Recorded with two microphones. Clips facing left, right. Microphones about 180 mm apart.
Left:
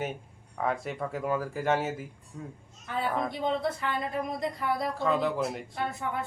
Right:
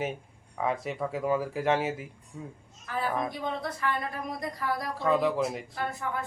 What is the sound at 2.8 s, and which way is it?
Speech, 25° left (ahead or behind).